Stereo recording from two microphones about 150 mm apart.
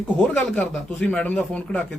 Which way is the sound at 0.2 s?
10° left (ahead or behind).